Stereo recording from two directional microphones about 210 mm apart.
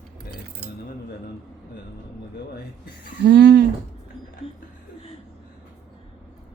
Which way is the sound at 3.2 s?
50° right (ahead or behind).